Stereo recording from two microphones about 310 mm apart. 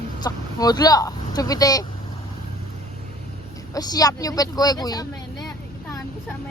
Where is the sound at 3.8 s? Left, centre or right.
Centre.